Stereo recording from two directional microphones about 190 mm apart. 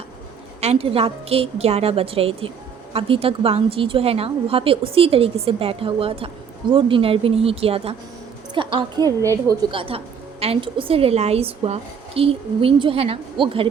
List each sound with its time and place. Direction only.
0.6 s a woman's voice: 30° right (ahead or behind); by 9.6 s 15° right (ahead or behind)
9.7 s a woman's voice: 30° right (ahead or behind)